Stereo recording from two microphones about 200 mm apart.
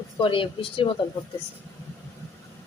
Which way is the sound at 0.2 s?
25° left (ahead or behind).